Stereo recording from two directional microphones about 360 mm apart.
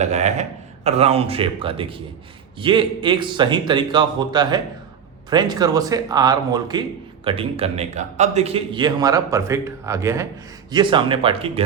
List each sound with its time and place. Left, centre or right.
0.0 s a man's voice: centre